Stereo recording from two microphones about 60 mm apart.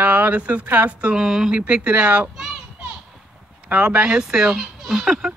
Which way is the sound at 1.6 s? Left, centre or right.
Centre.